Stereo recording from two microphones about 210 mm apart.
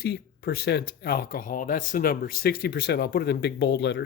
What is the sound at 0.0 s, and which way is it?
Speech, 50° left (ahead or behind).